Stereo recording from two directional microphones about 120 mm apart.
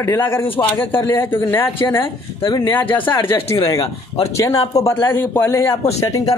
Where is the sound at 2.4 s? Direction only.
35° left (ahead or behind).